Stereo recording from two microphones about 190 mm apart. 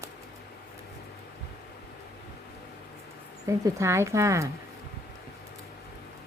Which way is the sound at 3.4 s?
15° right (ahead or behind).